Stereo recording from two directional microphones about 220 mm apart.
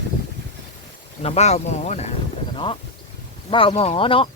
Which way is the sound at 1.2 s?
30° left (ahead or behind).